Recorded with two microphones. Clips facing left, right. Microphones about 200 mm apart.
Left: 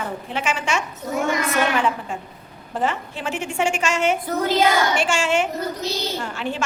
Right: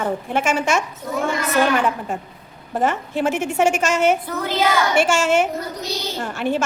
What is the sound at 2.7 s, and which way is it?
A woman's voice, 45° right (ahead or behind).